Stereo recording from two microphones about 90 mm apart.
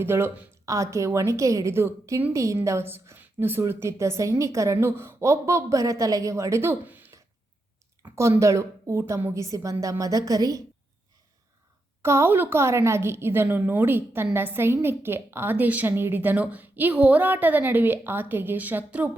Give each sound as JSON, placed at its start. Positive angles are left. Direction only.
{"t": 0.0, "sound": "a woman's voice", "side_deg": -25}
{"t": 8.0, "sound": "a woman's voice", "side_deg": -30}
{"t": 12.0, "sound": "a woman's voice", "side_deg": -30}